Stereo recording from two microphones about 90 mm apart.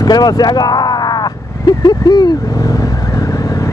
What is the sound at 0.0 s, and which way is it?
Crow, 50° left (ahead or behind).